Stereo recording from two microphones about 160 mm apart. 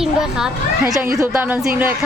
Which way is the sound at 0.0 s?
5° right (ahead or behind).